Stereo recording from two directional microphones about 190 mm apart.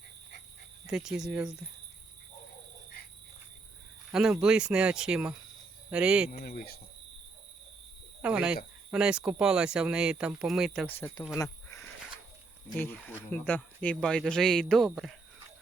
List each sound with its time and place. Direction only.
0.9 s speech: 5° right (ahead or behind)
4.1 s speech: 5° right (ahead or behind)
6.3 s speech: 45° left (ahead or behind)
8.2 s speech: 5° right (ahead or behind)
11.0 s speech: 10° left (ahead or behind)
12.8 s speech: 10° left (ahead or behind)